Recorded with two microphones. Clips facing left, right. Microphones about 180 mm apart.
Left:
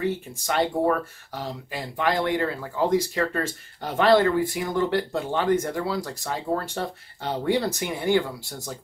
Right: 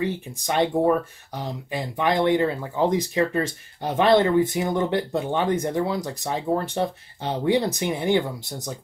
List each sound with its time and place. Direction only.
0.0 s speech: 20° right (ahead or behind)